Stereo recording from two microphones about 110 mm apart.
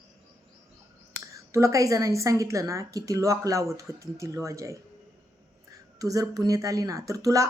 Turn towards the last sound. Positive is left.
turn(degrees=-30)  # may be behind; listen again after turning